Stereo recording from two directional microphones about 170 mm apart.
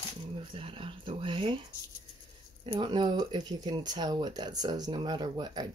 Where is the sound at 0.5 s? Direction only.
30° right (ahead or behind).